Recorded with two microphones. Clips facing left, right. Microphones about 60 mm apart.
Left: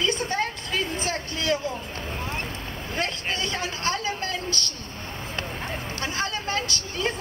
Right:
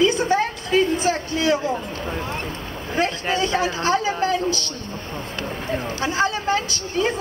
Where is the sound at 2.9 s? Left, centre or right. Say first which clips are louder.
Right 7 dB; centre.